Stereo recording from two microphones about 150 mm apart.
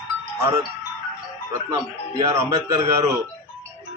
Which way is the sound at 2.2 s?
20° right (ahead or behind).